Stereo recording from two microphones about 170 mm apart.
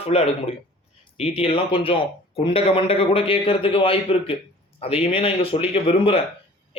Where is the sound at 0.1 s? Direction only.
35° left (ahead or behind).